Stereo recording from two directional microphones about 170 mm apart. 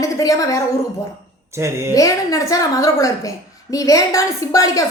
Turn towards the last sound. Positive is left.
turn(degrees=20)  # may be behind; listen again after turning